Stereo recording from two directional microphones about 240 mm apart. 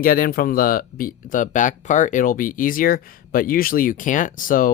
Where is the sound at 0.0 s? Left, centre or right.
Left.